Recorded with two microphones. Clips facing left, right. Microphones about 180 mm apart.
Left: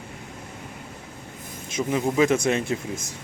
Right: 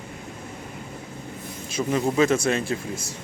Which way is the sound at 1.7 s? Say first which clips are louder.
Even; 15° left (ahead or behind).